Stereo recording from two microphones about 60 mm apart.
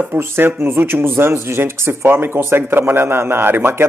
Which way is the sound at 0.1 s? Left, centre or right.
Right.